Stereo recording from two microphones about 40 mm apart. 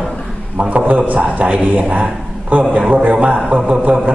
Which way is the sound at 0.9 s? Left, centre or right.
Right.